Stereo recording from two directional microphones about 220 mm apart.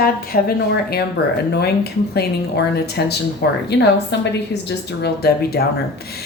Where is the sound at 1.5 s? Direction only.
45° left (ahead or behind).